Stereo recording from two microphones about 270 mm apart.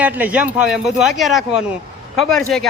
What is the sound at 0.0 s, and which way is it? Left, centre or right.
Speech, centre.